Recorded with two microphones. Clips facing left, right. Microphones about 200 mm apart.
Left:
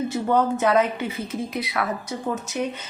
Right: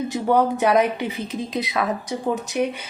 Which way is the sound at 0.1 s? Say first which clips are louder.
Right 4 dB; 10° right (ahead or behind).